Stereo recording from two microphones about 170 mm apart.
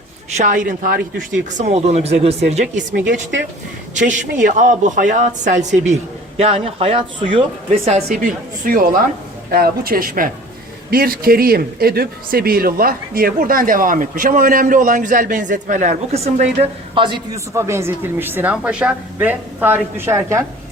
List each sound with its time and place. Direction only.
0.3 s speech: 50° right (ahead or behind)
1.5 s speech: 40° right (ahead or behind)
4.0 s speech: 50° right (ahead or behind); by 7.4 s 30° right (ahead or behind)
7.9 s speech: 45° right (ahead or behind)
16.9 s a man's voice: 30° right (ahead or behind)
17.3 s speech: 15° right (ahead or behind)